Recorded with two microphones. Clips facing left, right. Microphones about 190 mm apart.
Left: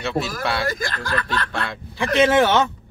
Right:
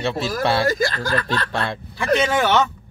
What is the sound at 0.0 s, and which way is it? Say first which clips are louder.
Speech: right 2 dB; 30° right (ahead or behind).